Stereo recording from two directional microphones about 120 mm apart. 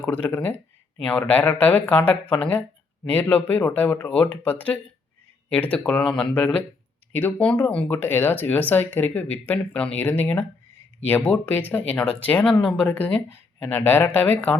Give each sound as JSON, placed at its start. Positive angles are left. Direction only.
{"t": 0.0, "sound": "speech", "side_deg": 15}